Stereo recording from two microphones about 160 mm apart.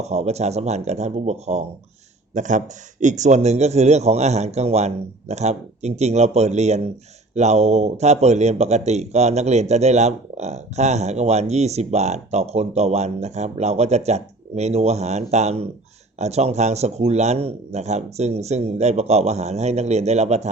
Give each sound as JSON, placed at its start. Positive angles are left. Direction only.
{"t": 0.0, "sound": "speech", "side_deg": -45}